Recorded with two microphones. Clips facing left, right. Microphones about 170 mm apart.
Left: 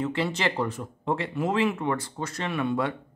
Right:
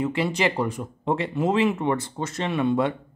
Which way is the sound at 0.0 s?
15° right (ahead or behind).